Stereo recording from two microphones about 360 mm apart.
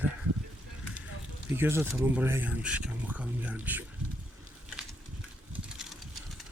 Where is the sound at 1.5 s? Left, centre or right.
Centre.